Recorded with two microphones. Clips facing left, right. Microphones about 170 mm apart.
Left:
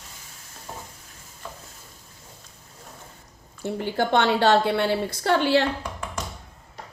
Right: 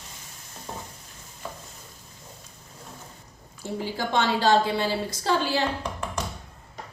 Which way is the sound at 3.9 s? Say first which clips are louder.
Left 4 dB; 60° left (ahead or behind).